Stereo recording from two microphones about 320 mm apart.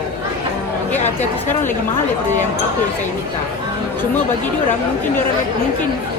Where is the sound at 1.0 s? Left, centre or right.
Left.